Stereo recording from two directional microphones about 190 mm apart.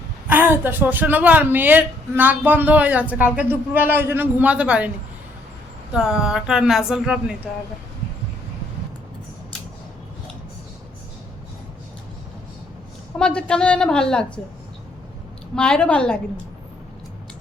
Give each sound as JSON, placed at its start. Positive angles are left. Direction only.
{"t": 0.3, "sound": "a woman's voice", "side_deg": -10}
{"t": 5.9, "sound": "a woman's voice", "side_deg": -5}
{"t": 13.1, "sound": "a woman's voice", "side_deg": 5}
{"t": 15.5, "sound": "a woman's voice", "side_deg": 5}